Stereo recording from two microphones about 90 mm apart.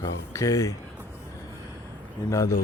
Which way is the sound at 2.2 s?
35° left (ahead or behind).